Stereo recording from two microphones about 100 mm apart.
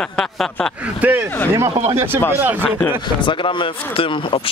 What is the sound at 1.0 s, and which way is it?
Speech, 20° right (ahead or behind).